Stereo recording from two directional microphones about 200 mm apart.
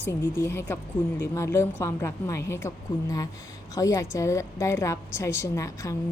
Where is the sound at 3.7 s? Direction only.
15° left (ahead or behind).